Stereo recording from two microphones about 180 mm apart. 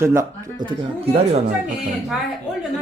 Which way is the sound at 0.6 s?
25° right (ahead or behind).